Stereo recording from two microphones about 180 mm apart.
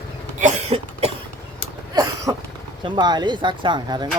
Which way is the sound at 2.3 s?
15° right (ahead or behind).